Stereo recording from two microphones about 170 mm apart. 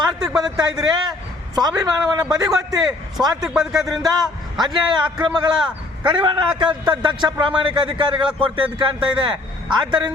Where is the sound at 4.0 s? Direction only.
25° right (ahead or behind).